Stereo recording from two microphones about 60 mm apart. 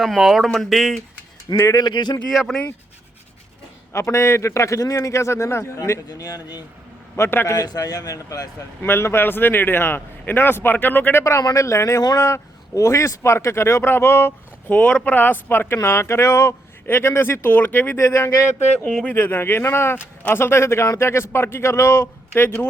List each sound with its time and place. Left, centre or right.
0.0 s speech: centre
1.5 s a man's voice: left
2.3 s speech: centre
3.9 s a man's voice: left
7.2 s speech: left
7.5 s speech: left
8.8 s speech: left
11.2 s a man's voice: left
13.8 s speech: left
14.7 s speech: left
17.9 s speech: left
19.0 s speech: left